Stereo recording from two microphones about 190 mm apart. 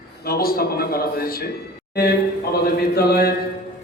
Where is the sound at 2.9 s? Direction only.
55° left (ahead or behind).